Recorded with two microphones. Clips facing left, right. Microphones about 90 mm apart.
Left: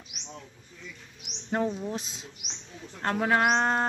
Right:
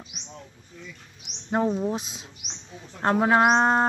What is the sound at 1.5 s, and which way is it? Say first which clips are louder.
Speech: right 5 dB; 15° right (ahead or behind).